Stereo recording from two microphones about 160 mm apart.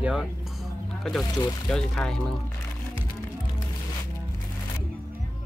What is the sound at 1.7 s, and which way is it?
Speech, 5° left (ahead or behind).